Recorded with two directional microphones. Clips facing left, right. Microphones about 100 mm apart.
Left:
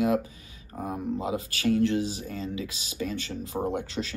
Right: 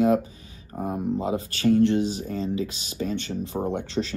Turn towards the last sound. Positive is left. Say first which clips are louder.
# right 3 dB
turn(degrees=-30)  # may be behind; listen again after turning